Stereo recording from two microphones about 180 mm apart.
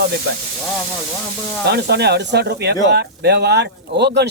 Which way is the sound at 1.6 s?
65° right (ahead or behind).